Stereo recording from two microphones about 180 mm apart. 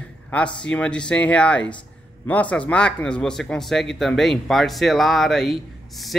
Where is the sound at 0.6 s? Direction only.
5° left (ahead or behind).